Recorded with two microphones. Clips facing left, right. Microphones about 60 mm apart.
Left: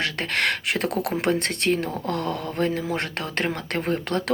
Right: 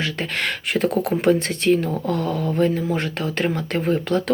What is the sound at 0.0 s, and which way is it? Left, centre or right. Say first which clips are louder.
Speech: even; left.